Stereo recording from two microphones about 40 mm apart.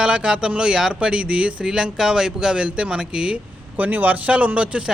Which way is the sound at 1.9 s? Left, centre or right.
Centre.